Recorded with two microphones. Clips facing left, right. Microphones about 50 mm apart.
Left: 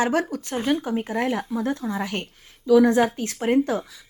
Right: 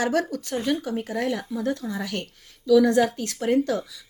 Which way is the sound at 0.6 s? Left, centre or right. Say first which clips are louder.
Left 3 dB; left.